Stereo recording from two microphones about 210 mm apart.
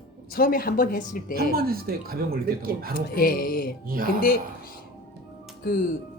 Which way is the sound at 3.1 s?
45° left (ahead or behind).